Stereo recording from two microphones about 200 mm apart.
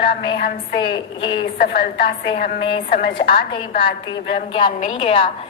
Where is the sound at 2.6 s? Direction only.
25° left (ahead or behind).